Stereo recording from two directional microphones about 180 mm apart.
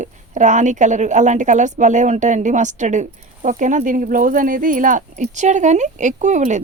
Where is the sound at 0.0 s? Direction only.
45° right (ahead or behind).